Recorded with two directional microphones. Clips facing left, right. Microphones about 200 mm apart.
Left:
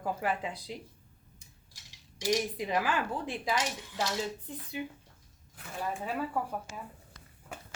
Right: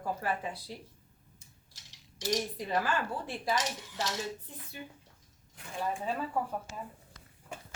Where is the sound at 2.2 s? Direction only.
15° left (ahead or behind).